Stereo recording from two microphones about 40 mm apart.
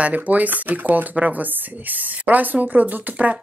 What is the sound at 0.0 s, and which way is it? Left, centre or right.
A woman's voice, right.